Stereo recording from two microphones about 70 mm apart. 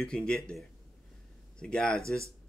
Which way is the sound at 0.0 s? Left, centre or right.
Centre.